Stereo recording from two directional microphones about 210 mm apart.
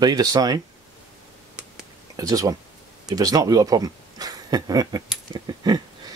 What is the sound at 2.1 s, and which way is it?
Speech, 15° right (ahead or behind).